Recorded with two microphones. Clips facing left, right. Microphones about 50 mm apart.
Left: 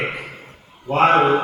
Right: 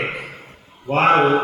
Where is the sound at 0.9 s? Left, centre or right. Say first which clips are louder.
Even; right.